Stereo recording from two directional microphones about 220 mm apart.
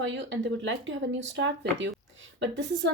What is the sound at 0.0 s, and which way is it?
Speech, 55° right (ahead or behind).